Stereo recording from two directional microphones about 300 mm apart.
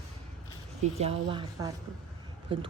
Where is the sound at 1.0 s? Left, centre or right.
Centre.